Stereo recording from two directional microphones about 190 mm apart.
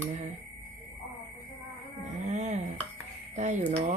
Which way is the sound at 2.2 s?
35° right (ahead or behind).